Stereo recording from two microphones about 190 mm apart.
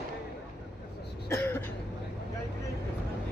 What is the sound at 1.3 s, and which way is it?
Cough, 10° left (ahead or behind).